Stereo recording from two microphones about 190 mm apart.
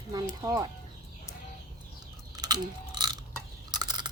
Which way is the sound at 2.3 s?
20° right (ahead or behind).